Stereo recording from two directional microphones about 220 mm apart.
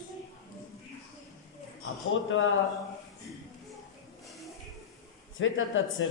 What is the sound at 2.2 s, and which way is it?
Speech, 60° left (ahead or behind).